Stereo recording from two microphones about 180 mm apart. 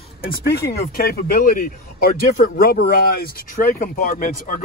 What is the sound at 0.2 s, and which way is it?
Speech, 55° left (ahead or behind).